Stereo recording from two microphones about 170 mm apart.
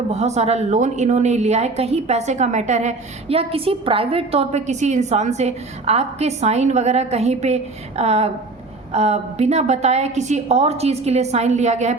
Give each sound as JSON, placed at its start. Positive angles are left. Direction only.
{"t": 0.1, "sound": "a woman's voice", "side_deg": -40}